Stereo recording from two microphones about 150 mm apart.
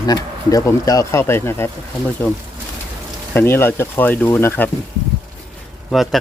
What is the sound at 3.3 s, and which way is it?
Speech, 15° left (ahead or behind).